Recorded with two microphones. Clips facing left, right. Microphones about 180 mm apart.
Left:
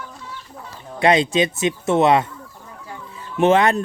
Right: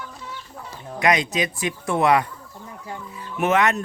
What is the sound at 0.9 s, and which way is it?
A man's voice, 30° left (ahead or behind).